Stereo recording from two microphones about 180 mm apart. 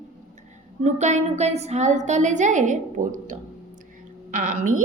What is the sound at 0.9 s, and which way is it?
A woman's voice, 40° right (ahead or behind).